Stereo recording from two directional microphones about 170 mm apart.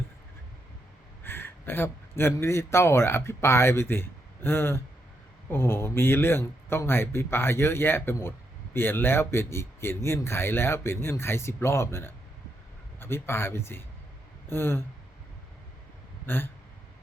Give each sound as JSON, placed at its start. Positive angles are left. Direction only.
{"t": 1.2, "sound": "speech", "side_deg": 10}
{"t": 16.2, "sound": "hiccup", "side_deg": 10}